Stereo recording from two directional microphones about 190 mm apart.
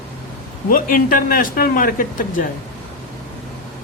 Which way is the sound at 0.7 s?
45° left (ahead or behind).